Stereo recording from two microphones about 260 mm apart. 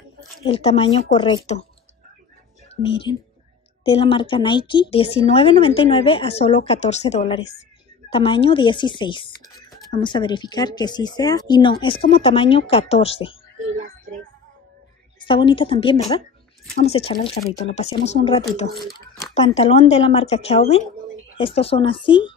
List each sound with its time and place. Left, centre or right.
0.5 s a woman's voice: left
2.7 s a woman's voice: left
15.2 s a woman's voice: centre